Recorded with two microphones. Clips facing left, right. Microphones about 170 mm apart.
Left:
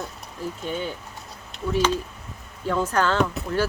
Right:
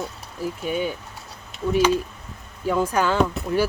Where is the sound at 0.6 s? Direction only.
10° right (ahead or behind).